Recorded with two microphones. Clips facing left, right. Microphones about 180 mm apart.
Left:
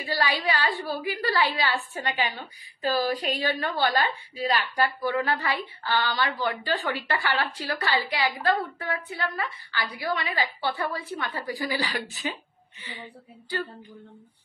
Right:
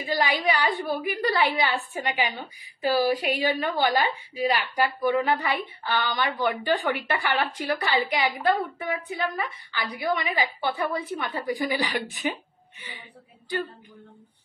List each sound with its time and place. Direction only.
0.0 s a woman's voice: 20° right (ahead or behind)